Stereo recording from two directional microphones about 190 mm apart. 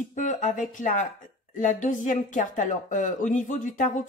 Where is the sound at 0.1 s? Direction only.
40° left (ahead or behind).